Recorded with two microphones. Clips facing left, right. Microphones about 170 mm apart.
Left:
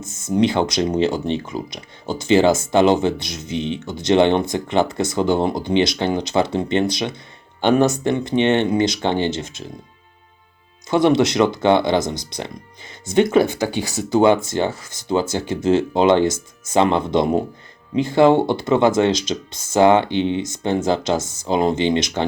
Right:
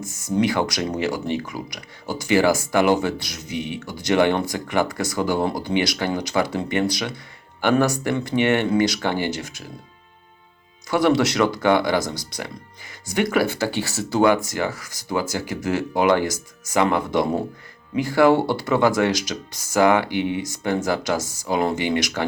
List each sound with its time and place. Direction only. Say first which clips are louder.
0.0 s speech: left 3 dB; 25° left (ahead or behind)
10.8 s speech: left 3 dB; 20° left (ahead or behind)